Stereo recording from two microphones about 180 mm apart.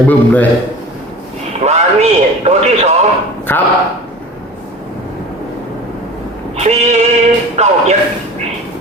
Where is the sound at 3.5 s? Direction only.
10° left (ahead or behind).